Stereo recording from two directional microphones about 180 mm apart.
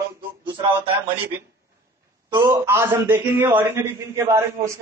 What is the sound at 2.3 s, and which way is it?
A man's voice, 15° right (ahead or behind).